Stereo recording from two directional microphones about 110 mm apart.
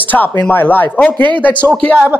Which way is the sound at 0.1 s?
15° left (ahead or behind).